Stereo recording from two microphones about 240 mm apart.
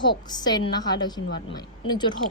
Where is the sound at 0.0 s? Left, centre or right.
Centre.